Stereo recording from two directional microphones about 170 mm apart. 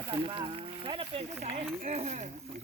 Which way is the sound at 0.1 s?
30° right (ahead or behind).